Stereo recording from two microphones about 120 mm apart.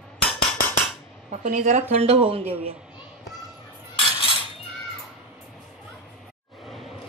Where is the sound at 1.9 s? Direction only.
60° right (ahead or behind).